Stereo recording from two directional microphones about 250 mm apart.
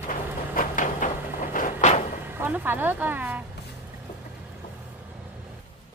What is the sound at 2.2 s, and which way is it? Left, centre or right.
Speech, centre.